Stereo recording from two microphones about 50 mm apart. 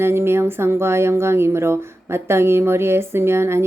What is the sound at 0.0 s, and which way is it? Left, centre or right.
Speech, right.